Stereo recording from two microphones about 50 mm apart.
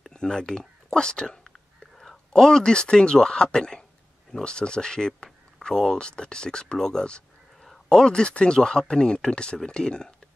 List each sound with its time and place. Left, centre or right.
0.1 s speech: centre